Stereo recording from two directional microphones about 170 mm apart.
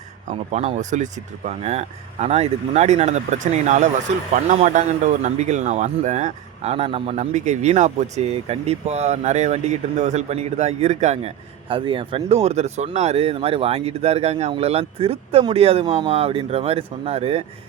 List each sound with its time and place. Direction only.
0.3 s a man's voice: 45° right (ahead or behind)